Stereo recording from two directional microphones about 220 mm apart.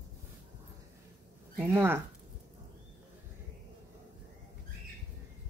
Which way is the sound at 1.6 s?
10° right (ahead or behind).